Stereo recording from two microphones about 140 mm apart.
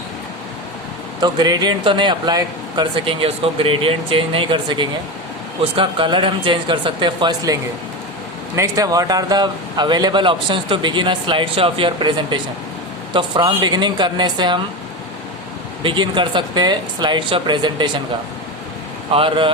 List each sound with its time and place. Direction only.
1.2 s speech: 30° right (ahead or behind)
15.8 s speech: 35° right (ahead or behind)
19.1 s speech: 40° right (ahead or behind)